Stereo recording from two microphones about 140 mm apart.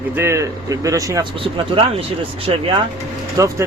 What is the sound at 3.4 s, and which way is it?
Speech, 25° right (ahead or behind).